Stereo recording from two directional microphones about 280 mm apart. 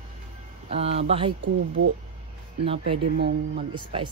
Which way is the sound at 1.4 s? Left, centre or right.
Right.